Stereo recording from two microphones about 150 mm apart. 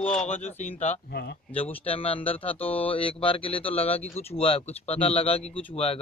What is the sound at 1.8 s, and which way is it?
Speech, 40° left (ahead or behind).